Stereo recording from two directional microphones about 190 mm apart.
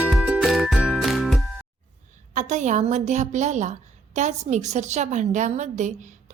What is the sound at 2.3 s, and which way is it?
A woman's voice, 40° right (ahead or behind).